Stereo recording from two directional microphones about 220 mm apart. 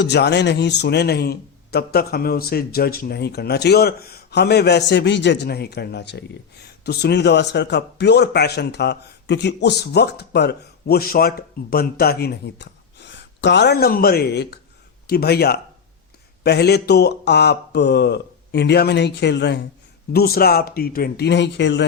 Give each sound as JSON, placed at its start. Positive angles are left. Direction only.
{"t": 0.0, "sound": "a man's voice", "side_deg": 50}